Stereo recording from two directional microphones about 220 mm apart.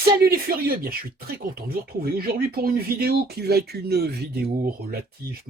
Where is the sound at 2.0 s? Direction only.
45° right (ahead or behind).